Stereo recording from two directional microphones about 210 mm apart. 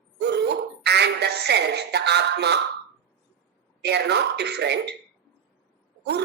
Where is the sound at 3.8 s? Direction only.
50° right (ahead or behind).